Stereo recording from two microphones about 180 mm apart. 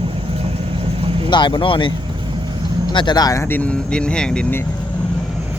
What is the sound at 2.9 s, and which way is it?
Speech, 25° left (ahead or behind).